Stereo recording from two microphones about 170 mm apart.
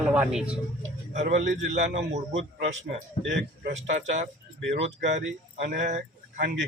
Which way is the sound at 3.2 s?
90° right.